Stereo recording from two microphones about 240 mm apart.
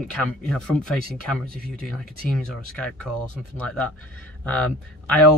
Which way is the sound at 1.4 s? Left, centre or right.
Right.